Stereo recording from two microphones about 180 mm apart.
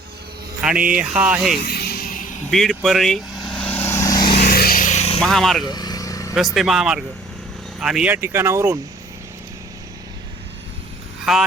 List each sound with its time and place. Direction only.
0.6 s speech: 5° right (ahead or behind)
1.6 s music: 60° left (ahead or behind)
2.5 s vehicle: centre (ahead or behind); by 4.2 s 15° left (ahead or behind)
4.4 s vehicle: 55° left (ahead or behind); by 5.2 s 35° left (ahead or behind)
5.2 s speech: centre (ahead or behind)
5.6 s vehicle: 20° left (ahead or behind)
6.3 s speech: centre (ahead or behind)
11.3 s speech: centre (ahead or behind)